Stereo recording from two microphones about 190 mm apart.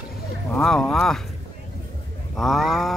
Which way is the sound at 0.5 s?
5° left (ahead or behind).